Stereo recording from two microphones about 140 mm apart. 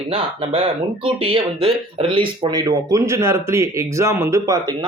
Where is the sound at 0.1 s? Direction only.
40° right (ahead or behind).